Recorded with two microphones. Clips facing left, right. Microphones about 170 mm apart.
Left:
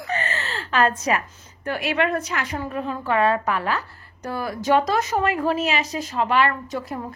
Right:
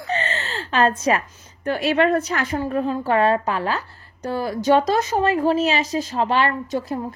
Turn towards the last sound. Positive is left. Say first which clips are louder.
# right 4 dB
turn(degrees=-30)  # may be behind; listen again after turning